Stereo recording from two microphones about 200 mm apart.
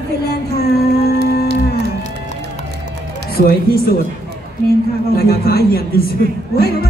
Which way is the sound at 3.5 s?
50° left (ahead or behind).